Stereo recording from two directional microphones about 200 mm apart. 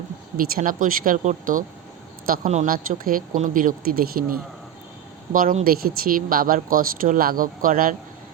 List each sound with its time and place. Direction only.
0.3 s speech: 45° right (ahead or behind)